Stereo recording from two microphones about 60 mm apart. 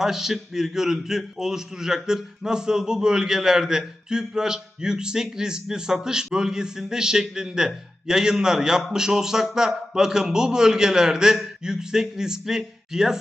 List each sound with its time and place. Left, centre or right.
0.0 s a man's voice: centre